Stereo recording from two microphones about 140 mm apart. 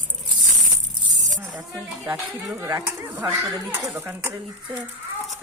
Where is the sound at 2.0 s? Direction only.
15° right (ahead or behind).